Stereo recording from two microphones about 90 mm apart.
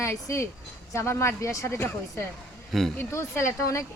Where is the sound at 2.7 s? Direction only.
5° left (ahead or behind).